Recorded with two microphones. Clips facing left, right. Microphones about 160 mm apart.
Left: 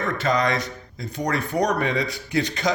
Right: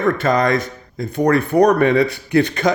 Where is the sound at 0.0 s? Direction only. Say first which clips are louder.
Right 6 dB; 50° right (ahead or behind).